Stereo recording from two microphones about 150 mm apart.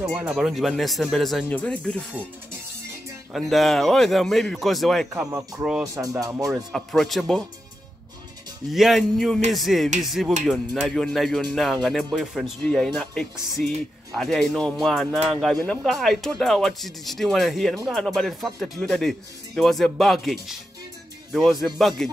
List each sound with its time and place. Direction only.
0.0 s speech: 5° right (ahead or behind)
3.3 s speech: centre (ahead or behind)
6.2 s speech: 25° right (ahead or behind)
6.5 s speech: centre (ahead or behind)
8.7 s speech: centre (ahead or behind)